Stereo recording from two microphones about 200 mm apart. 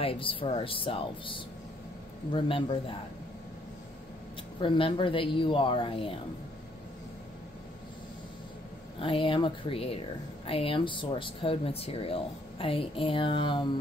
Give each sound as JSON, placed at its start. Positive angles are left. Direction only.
{"t": 0.0, "sound": "speech", "side_deg": 25}
{"t": 4.6, "sound": "speech", "side_deg": 25}
{"t": 9.0, "sound": "speech", "side_deg": 25}